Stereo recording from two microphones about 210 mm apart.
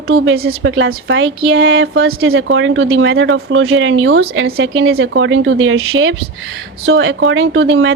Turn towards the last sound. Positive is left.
turn(degrees=-65)  # may be behind; listen again after turning